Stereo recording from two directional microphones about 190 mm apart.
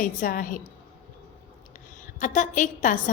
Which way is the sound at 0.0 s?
45° left (ahead or behind).